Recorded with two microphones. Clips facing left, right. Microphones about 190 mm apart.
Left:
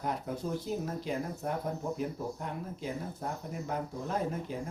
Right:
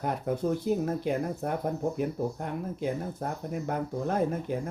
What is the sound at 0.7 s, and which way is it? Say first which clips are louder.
Speech: right 7 dB; 55° right (ahead or behind).